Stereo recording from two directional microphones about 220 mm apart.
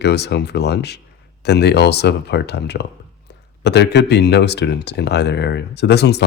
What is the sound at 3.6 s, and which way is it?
Speech, 50° left (ahead or behind).